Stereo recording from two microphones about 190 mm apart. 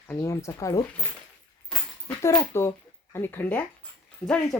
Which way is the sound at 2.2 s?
15° left (ahead or behind).